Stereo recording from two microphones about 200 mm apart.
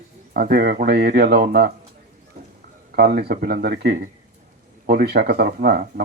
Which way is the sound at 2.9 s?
50° right (ahead or behind).